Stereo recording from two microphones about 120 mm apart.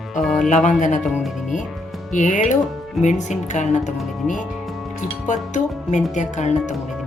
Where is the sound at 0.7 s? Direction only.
90° left.